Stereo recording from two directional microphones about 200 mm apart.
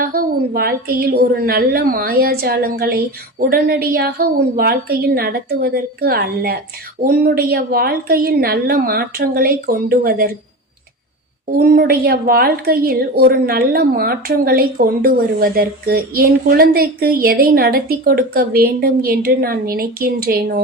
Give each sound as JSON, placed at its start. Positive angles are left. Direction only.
{"t": 0.0, "sound": "a woman's voice", "side_deg": -45}
{"t": 11.4, "sound": "a woman's voice", "side_deg": -45}